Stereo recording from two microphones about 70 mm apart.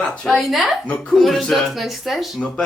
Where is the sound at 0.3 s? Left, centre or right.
Centre.